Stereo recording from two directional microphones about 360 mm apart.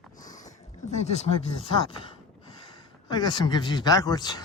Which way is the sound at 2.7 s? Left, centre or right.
Centre.